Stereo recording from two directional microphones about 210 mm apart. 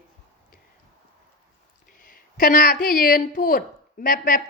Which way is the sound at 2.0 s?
40° left (ahead or behind).